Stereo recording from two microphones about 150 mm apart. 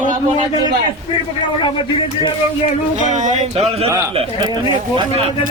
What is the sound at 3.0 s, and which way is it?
Speech, 55° right (ahead or behind).